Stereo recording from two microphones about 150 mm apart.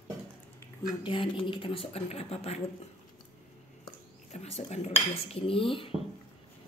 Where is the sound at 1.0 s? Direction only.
35° left (ahead or behind).